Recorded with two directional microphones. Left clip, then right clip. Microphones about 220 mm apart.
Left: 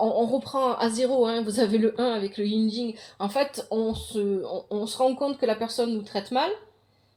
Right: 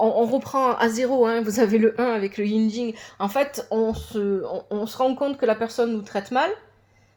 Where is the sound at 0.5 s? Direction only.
35° right (ahead or behind).